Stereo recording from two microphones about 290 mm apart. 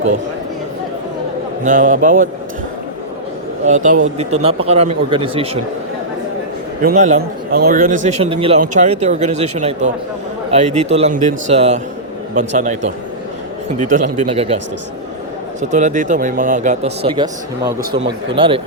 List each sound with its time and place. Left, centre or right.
1.6 s a man's voice: right
3.7 s a man's voice: right
6.8 s a man's voice: right
15.7 s a man's voice: right
18.3 s speech: centre